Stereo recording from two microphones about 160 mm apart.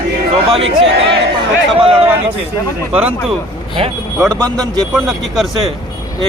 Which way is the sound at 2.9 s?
10° right (ahead or behind).